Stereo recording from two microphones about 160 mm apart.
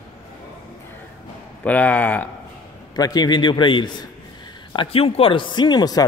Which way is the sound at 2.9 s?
25° left (ahead or behind).